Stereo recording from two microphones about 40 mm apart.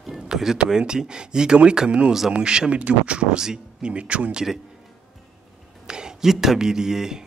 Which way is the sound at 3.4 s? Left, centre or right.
Centre.